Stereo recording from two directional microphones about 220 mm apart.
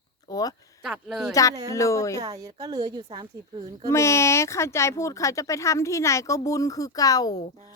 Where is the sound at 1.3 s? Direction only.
15° left (ahead or behind).